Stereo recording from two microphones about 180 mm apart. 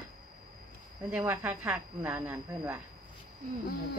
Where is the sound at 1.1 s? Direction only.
10° right (ahead or behind).